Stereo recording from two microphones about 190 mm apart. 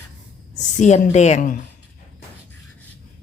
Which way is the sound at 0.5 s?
40° left (ahead or behind).